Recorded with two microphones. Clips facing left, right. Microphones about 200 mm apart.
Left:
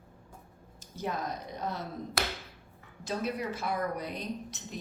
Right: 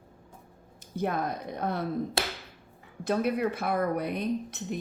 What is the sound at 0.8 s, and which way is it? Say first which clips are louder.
A woman's voice: right 5 dB; 60° right (ahead or behind).